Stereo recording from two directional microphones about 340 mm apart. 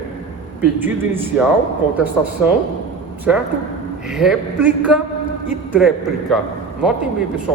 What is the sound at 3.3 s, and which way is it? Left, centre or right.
Speech, centre.